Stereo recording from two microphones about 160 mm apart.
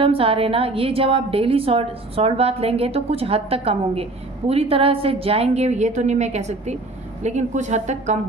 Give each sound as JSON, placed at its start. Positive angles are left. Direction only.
{"t": 0.0, "sound": "a woman's voice", "side_deg": -35}